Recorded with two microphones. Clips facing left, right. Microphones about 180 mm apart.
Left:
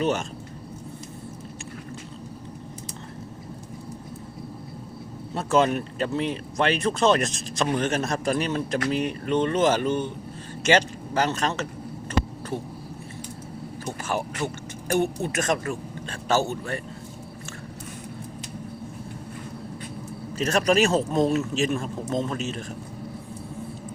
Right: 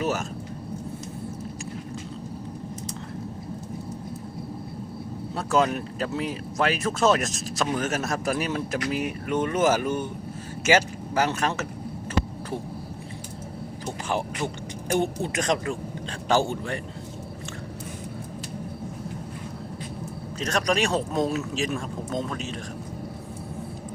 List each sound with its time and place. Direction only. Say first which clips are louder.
0.0 s speech: left 2 dB; 5° right (ahead or behind)
5.3 s speech: left 2 dB; centre (ahead or behind)
13.8 s speech: even; 15° right (ahead or behind)
20.4 s speech: left 4 dB; 5° left (ahead or behind)